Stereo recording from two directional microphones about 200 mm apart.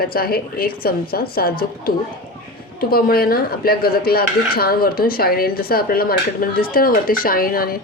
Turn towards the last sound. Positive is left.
turn(degrees=45)  # may be behind; listen again after turning